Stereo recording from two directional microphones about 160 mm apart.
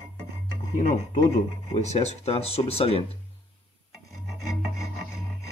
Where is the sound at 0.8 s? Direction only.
50° left (ahead or behind).